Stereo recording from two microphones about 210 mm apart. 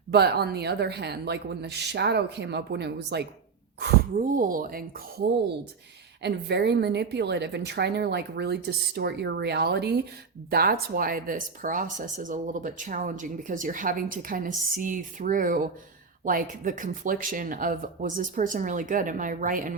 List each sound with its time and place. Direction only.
0.1 s a woman's voice: 50° right (ahead or behind)
4.2 s a woman's voice: 40° right (ahead or behind)
6.2 s a woman's voice: 55° right (ahead or behind)